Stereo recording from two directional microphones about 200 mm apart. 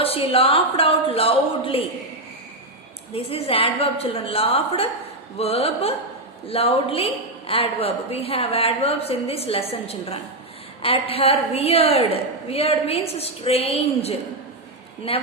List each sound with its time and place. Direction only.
0.0 s a woman's voice: 30° left (ahead or behind)
3.1 s a woman's voice: 30° left (ahead or behind)